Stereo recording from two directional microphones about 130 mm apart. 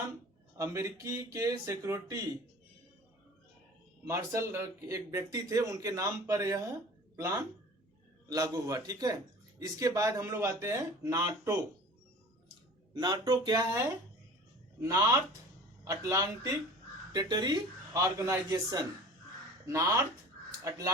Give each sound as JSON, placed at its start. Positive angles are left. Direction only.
{"t": 0.5, "sound": "speech", "side_deg": -25}
{"t": 4.0, "sound": "speech", "side_deg": -20}
{"t": 8.3, "sound": "speech", "side_deg": -25}
{"t": 12.9, "sound": "speech", "side_deg": -35}